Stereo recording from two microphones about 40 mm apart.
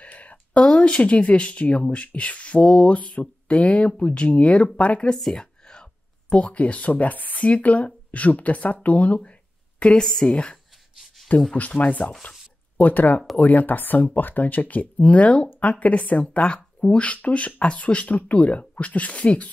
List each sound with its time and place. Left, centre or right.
0.0 s a sound: left
0.7 s speech: left
5.1 s a sound: centre
6.3 s speech: left
9.8 s a woman's voice: left
10.0 s a woman's voice: centre
10.3 s speech: left
11.3 s speech: left